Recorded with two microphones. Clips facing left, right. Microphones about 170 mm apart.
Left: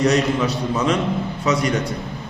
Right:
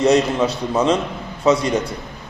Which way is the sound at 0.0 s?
25° right (ahead or behind).